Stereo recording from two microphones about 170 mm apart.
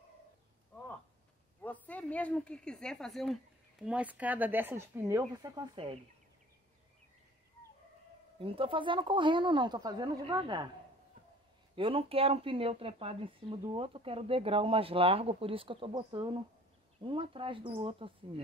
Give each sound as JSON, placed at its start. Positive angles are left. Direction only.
{"t": 1.6, "sound": "speech", "side_deg": 10}
{"t": 8.4, "sound": "speech", "side_deg": -30}
{"t": 11.7, "sound": "speech", "side_deg": -30}